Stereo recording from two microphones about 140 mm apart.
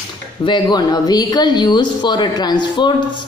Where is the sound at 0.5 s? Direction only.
30° left (ahead or behind).